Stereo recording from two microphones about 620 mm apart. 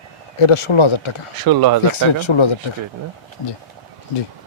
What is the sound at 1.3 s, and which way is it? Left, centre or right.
Speech, right.